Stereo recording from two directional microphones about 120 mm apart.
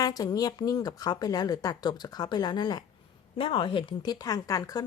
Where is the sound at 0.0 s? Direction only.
30° left (ahead or behind).